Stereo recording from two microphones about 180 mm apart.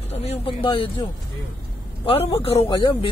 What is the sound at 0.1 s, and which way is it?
Speech, 35° left (ahead or behind).